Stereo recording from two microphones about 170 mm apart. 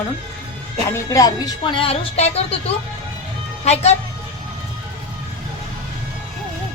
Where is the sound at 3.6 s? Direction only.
40° left (ahead or behind).